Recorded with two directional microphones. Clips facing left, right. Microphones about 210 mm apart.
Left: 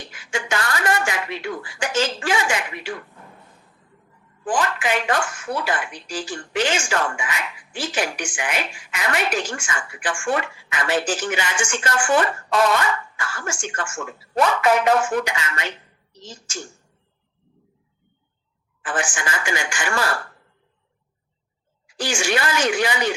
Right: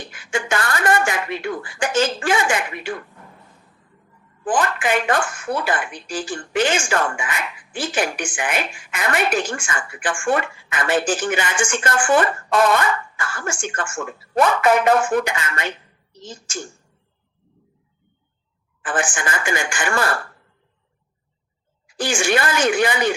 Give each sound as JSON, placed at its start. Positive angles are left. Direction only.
{"t": 0.1, "sound": "a sound", "side_deg": -55}
{"t": 4.4, "sound": "speech", "side_deg": -50}
{"t": 18.8, "sound": "speech", "side_deg": -50}
{"t": 21.9, "sound": "speech", "side_deg": -55}